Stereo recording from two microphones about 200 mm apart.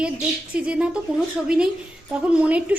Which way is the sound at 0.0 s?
5° right (ahead or behind).